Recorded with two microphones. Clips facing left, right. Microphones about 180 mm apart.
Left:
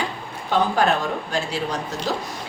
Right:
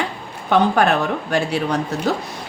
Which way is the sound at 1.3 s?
60° right (ahead or behind).